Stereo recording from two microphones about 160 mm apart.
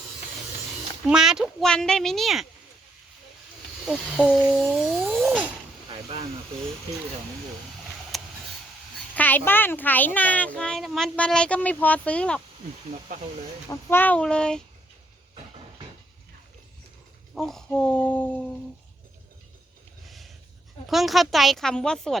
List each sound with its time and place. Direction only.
1.0 s speech: 5° right (ahead or behind)
3.8 s speech: centre (ahead or behind)
5.9 s speech: 40° right (ahead or behind)
8.1 s a sound: centre (ahead or behind)
9.1 s a child's voice: 10° left (ahead or behind)
13.1 s speech: 60° right (ahead or behind)
13.7 s speech: 10° left (ahead or behind)
17.3 s speech: centre (ahead or behind)
20.1 s a sound: centre (ahead or behind)
20.8 s speech: centre (ahead or behind)